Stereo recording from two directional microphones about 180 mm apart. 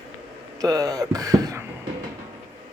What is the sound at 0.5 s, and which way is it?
Speech, 20° right (ahead or behind).